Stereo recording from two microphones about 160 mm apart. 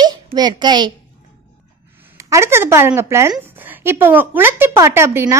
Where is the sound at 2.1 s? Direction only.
20° right (ahead or behind).